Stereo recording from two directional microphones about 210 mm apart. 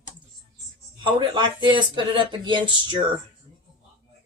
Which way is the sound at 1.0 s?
25° right (ahead or behind).